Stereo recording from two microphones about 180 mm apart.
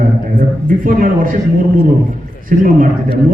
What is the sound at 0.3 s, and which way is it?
A man's voice, 50° right (ahead or behind).